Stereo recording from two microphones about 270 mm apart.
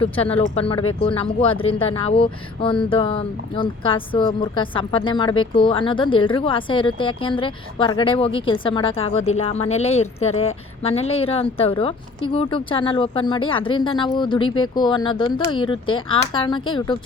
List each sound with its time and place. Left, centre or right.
0.0 s speech: left